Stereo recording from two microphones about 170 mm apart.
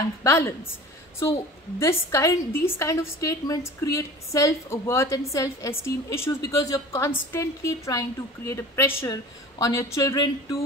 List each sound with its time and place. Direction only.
0.2 s a woman's voice: 15° left (ahead or behind)
1.8 s a woman's voice: 20° left (ahead or behind)